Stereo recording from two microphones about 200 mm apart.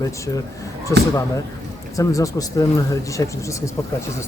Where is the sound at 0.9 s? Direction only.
15° left (ahead or behind).